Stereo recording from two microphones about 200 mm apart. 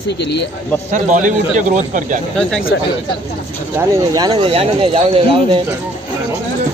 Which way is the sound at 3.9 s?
20° right (ahead or behind).